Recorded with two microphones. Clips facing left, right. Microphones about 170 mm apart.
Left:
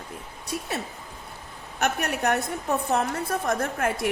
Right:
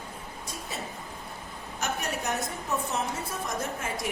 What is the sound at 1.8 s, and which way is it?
A woman's voice, 65° left (ahead or behind).